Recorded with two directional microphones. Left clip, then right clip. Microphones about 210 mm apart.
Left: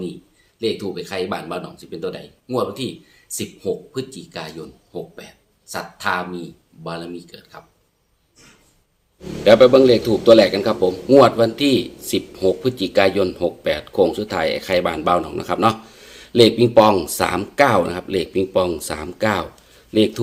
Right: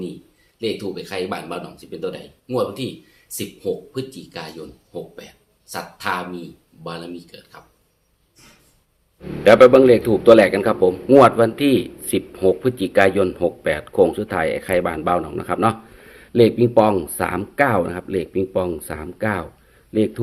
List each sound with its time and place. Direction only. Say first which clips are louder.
0.6 s a man's voice: left 2 dB; 15° left (ahead or behind)
9.4 s a man's voice: right 1 dB; 5° left (ahead or behind)